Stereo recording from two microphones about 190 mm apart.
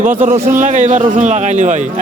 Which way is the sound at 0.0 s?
45° right (ahead or behind).